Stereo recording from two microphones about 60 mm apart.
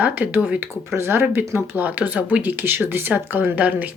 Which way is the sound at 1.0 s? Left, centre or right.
Right.